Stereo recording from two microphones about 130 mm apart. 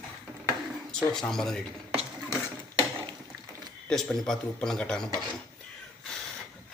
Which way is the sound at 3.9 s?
5° left (ahead or behind).